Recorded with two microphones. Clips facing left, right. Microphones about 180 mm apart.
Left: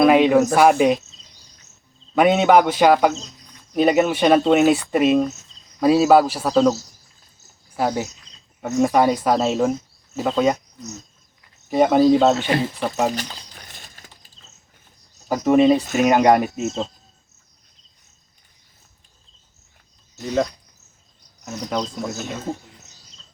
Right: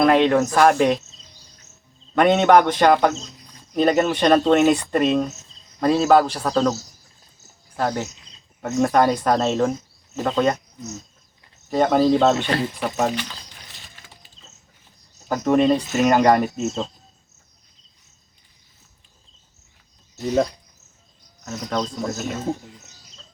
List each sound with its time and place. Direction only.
0.0 s speech: 10° left (ahead or behind)
2.1 s speech: 5° left (ahead or behind)
7.8 s speech: 10° left (ahead or behind)
11.7 s speech: 10° left (ahead or behind)
13.9 s a sound: 45° left (ahead or behind)
15.3 s speech: 5° left (ahead or behind)
21.4 s speech: 10° left (ahead or behind)